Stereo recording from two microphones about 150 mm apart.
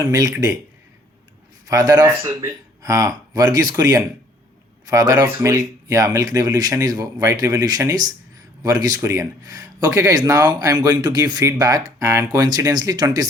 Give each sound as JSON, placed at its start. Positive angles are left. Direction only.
{"t": 0.0, "sound": "speech", "side_deg": -25}
{"t": 1.6, "sound": "speech", "side_deg": -25}
{"t": 4.9, "sound": "speech", "side_deg": -25}